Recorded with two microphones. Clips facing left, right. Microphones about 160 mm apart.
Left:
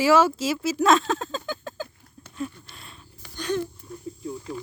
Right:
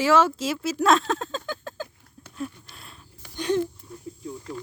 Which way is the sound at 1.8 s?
5° right (ahead or behind).